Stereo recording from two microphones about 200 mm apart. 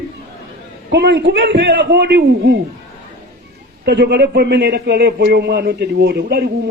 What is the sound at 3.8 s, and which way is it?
A man's voice, 55° right (ahead or behind).